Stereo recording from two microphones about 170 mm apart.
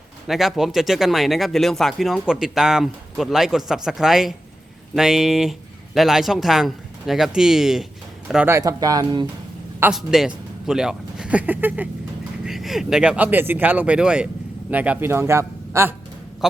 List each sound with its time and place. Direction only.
0.3 s a man's voice: centre (ahead or behind)
8.5 s speech: 20° right (ahead or behind)
9.8 s a man's voice: centre (ahead or behind)
16.4 s speech: centre (ahead or behind)